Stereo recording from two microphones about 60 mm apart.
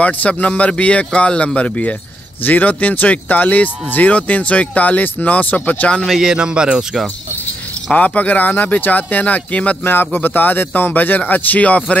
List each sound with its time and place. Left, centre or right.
0.0 s speech: left
6.0 s speech: centre
6.3 s speech: centre
7.9 s speech: left
9.8 s speech: left